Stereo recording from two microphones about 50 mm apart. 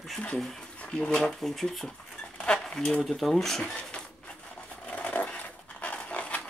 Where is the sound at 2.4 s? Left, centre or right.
Centre.